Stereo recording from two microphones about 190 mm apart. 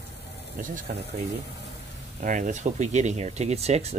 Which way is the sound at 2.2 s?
40° right (ahead or behind).